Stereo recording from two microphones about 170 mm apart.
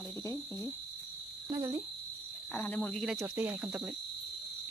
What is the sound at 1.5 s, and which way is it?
Speech, 20° right (ahead or behind).